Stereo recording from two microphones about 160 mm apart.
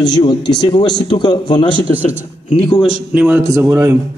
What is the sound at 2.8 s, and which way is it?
A man's voice, 10° right (ahead or behind).